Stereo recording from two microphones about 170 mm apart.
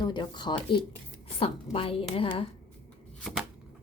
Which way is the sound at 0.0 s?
25° left (ahead or behind).